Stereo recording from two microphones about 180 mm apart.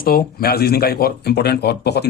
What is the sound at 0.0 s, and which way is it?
Speech, 55° left (ahead or behind).